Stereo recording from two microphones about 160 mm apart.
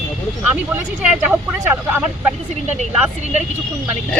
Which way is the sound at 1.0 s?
10° right (ahead or behind).